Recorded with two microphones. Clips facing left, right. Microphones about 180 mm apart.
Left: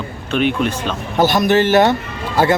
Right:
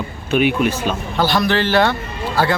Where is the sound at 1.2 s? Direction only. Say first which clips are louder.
Left 4 dB; 20° left (ahead or behind).